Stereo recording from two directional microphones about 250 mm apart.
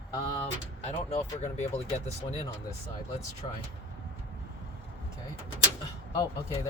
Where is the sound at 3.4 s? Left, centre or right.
Left.